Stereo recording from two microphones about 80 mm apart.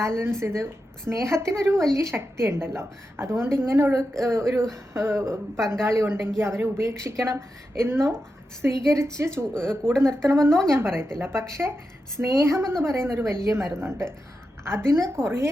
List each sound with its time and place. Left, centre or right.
0.0 s a woman's voice: right
9.6 s speech: centre
10.2 s a woman's voice: right